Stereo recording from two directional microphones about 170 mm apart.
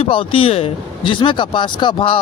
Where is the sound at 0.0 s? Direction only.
30° left (ahead or behind).